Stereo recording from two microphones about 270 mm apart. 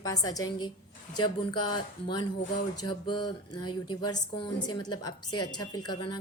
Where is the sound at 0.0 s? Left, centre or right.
Centre.